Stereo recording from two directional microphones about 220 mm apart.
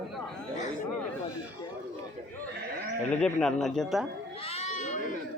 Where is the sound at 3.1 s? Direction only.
5° left (ahead or behind).